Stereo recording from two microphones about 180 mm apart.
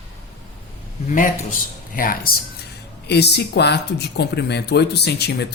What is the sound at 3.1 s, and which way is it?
Speech, 65° left (ahead or behind).